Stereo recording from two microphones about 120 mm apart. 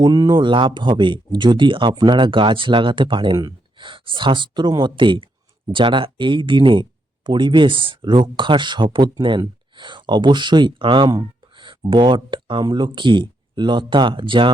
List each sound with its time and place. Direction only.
0.0 s speech: 30° right (ahead or behind)